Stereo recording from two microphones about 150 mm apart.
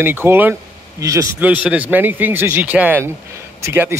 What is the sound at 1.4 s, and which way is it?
A man's voice, 10° right (ahead or behind).